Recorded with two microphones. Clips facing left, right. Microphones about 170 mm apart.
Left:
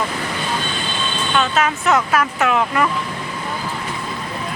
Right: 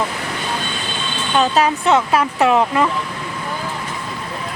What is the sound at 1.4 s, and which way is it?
Speech, 35° right (ahead or behind).